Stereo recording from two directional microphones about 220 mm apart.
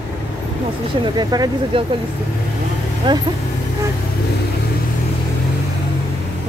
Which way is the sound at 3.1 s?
20° right (ahead or behind).